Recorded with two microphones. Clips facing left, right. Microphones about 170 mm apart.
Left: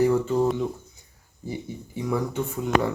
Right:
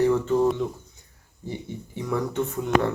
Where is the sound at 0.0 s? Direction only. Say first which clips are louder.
Right 1 dB; 5° left (ahead or behind).